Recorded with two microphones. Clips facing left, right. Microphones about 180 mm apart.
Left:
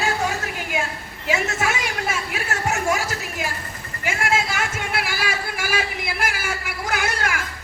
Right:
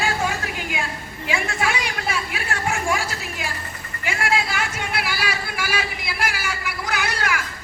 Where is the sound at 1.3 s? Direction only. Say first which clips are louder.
Left 1 dB; 45° left (ahead or behind).